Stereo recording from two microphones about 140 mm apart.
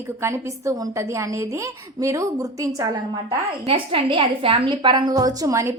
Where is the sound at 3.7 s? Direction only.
40° right (ahead or behind).